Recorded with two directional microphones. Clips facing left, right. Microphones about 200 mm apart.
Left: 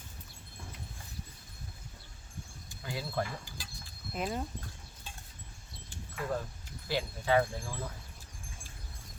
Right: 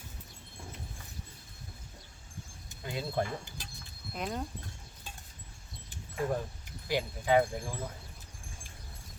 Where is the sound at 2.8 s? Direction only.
20° right (ahead or behind).